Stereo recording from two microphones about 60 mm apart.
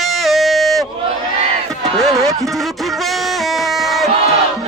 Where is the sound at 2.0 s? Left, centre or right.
Centre.